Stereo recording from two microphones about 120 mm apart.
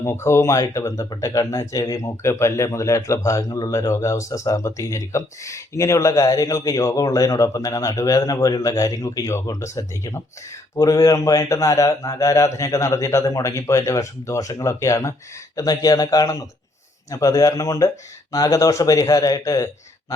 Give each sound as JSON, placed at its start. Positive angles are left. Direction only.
{"t": 0.0, "sound": "speech", "side_deg": 25}